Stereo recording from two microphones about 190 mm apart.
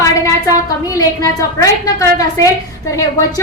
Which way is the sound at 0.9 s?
15° left (ahead or behind).